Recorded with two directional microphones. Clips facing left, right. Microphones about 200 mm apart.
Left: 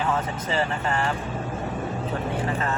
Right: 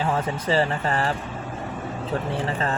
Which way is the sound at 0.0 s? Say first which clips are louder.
Right 2 dB; 35° right (ahead or behind).